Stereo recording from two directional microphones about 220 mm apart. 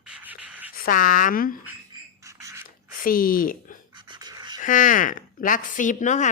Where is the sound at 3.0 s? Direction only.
40° left (ahead or behind).